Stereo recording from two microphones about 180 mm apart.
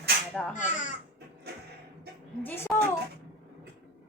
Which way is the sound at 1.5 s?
65° right (ahead or behind).